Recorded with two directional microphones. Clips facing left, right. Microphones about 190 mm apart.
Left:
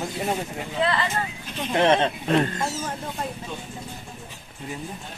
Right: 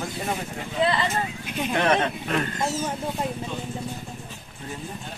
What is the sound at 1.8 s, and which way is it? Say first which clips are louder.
Speech: left 4 dB; 25° left (ahead or behind).